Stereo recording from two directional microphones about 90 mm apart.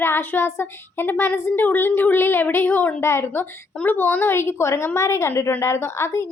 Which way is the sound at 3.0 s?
30° left (ahead or behind).